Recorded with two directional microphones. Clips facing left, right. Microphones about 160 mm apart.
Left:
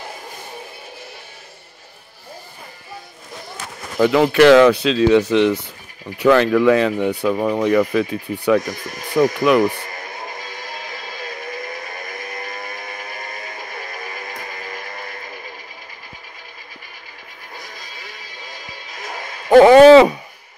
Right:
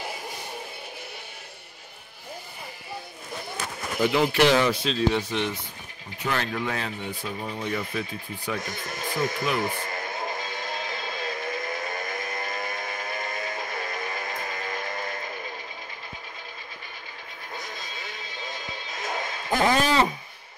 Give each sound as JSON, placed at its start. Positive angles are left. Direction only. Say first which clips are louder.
{"t": 4.0, "sound": "speech", "louder": "left 9 dB", "side_deg": 75}
{"t": 9.1, "sound": "speech", "louder": "left 13 dB", "side_deg": 70}
{"t": 9.9, "sound": "music", "louder": "right 1 dB", "side_deg": -25}
{"t": 17.6, "sound": "music", "louder": "even", "side_deg": -25}
{"t": 19.5, "sound": "a sound", "louder": "left 17 dB", "side_deg": 75}